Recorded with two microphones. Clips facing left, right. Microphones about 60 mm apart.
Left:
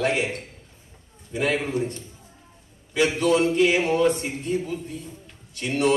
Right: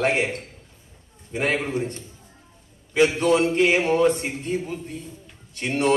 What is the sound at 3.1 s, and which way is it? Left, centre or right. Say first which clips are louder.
A man's voice: even; right.